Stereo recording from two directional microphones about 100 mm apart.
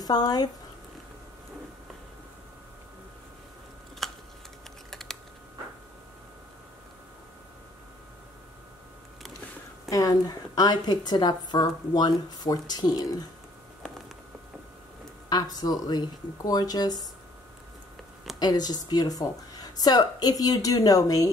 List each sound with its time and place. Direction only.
0.0 s speech: 40° left (ahead or behind)
4.0 s typing: centre (ahead or behind)
9.8 s a woman's voice: 35° left (ahead or behind)
15.2 s a woman's voice: 40° left (ahead or behind)
18.4 s a woman's voice: 40° left (ahead or behind)